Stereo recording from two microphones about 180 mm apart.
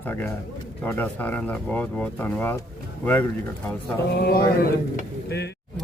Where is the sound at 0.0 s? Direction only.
10° left (ahead or behind).